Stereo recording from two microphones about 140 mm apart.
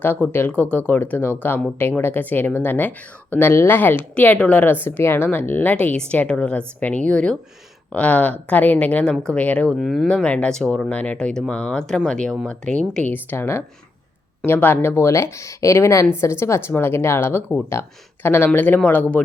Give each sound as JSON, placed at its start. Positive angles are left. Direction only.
{"t": 0.0, "sound": "speech", "side_deg": 15}